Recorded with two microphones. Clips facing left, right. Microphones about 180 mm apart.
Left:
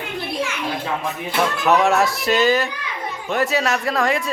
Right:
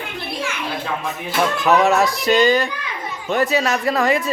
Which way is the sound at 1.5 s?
Centre (ahead or behind).